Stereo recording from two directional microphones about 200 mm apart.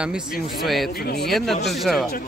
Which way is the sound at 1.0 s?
55° left (ahead or behind).